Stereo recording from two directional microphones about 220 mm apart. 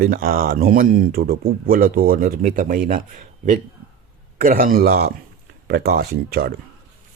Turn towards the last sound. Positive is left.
turn(degrees=-45)  # may be behind; listen again after turning